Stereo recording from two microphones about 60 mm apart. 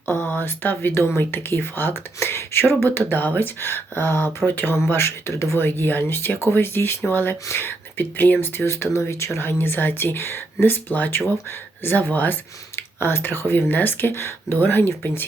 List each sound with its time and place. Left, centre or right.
0.0 s speech: left
12.7 s speech: left